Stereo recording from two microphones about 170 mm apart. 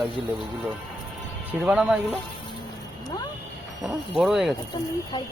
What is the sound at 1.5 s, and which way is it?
Speech, 5° right (ahead or behind).